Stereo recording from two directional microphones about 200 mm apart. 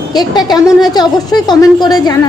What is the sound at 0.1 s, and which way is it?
A woman's voice, 20° left (ahead or behind).